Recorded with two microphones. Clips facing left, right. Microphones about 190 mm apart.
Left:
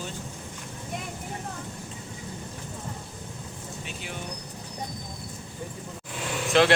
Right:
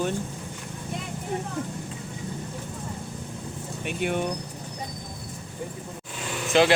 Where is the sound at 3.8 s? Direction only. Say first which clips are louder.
Right 14 dB; 60° right (ahead or behind).